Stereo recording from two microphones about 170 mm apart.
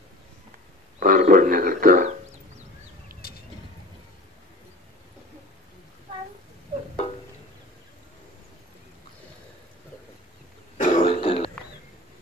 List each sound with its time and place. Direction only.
0.9 s a sound: 55° right (ahead or behind)
1.2 s speech: 55° right (ahead or behind)
3.1 s vehicle: 60° right (ahead or behind)
10.8 s throat clearing: 50° left (ahead or behind)
11.1 s throat clearing: 30° left (ahead or behind)